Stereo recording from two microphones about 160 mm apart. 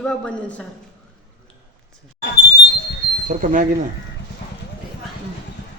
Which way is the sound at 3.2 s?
55° right (ahead or behind).